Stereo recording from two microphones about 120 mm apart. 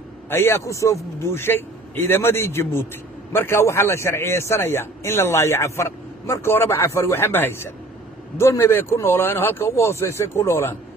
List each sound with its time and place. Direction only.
0.3 s speech: 20° left (ahead or behind)